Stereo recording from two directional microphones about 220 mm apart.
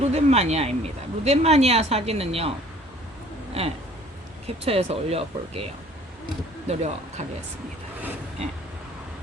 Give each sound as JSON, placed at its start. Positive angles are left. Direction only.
{"t": 0.0, "sound": "speech", "side_deg": -30}
{"t": 3.6, "sound": "speech", "side_deg": -30}